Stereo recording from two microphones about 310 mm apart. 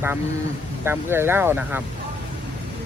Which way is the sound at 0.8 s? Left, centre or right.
Centre.